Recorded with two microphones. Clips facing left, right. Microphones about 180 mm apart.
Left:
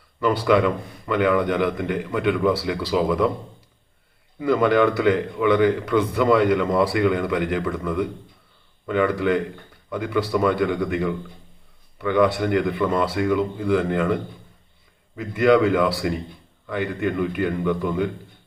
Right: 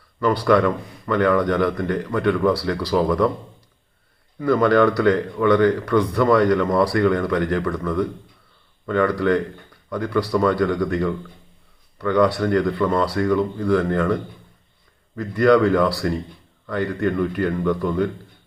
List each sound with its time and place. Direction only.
0.4 s speech: 15° left (ahead or behind)
2.0 s speech: 10° left (ahead or behind); by 2.9 s 25° left (ahead or behind)
2.9 s speech: 10° left (ahead or behind)
4.4 s speech: 10° left (ahead or behind)
6.4 s speech: 10° left (ahead or behind)
6.7 s speech: 25° left (ahead or behind)
13.7 s speech: 20° left (ahead or behind)
15.4 s speech: 20° left (ahead or behind)